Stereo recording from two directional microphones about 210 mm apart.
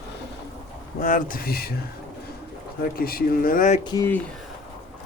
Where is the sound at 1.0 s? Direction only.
40° left (ahead or behind).